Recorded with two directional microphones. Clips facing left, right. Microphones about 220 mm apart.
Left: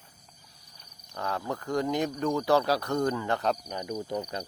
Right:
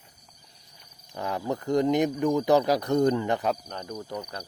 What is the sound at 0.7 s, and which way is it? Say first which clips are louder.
Speech: right 3 dB; 20° right (ahead or behind).